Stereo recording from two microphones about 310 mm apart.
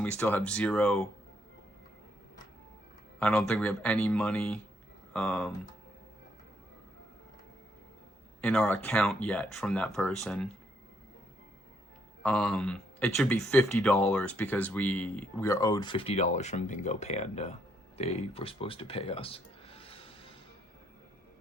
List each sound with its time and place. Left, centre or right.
0.0 s speech: centre
3.2 s speech: centre
8.4 s speech: centre
12.2 s speech: centre